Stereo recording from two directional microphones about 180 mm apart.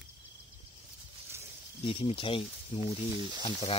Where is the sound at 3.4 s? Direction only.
35° left (ahead or behind).